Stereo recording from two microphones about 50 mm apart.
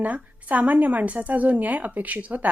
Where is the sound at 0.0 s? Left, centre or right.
Right.